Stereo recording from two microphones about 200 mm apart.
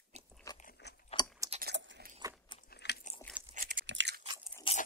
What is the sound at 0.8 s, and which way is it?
Chewing, 60° left (ahead or behind).